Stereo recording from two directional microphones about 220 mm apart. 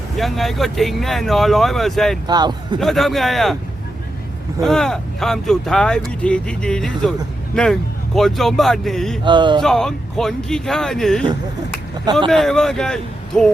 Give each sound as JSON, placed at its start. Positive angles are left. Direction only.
{"t": 0.2, "sound": "speech", "side_deg": 0}
{"t": 2.2, "sound": "a man's voice", "side_deg": -20}
{"t": 2.8, "sound": "speech", "side_deg": 0}
{"t": 4.6, "sound": "speech", "side_deg": 0}
{"t": 9.2, "sound": "a man's voice", "side_deg": -20}
{"t": 9.6, "sound": "speech", "side_deg": 0}
{"t": 12.3, "sound": "speech", "side_deg": 0}